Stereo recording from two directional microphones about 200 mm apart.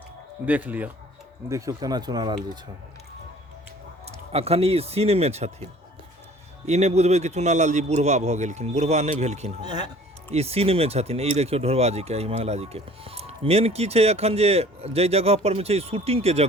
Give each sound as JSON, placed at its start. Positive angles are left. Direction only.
{"t": 0.4, "sound": "speech", "side_deg": -5}
{"t": 4.0, "sound": "speech", "side_deg": -30}
{"t": 6.7, "sound": "speech", "side_deg": -35}
{"t": 9.6, "sound": "speech", "side_deg": -20}
{"t": 10.3, "sound": "speech", "side_deg": -30}